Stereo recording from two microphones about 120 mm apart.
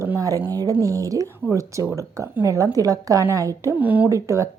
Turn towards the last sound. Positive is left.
turn(degrees=-25)  # may be behind; listen again after turning